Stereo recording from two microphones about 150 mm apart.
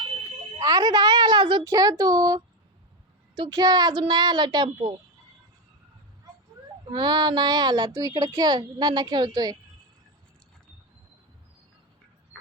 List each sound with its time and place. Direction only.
0.6 s a woman's voice: 25° right (ahead or behind)
6.9 s a child's voice: 30° right (ahead or behind)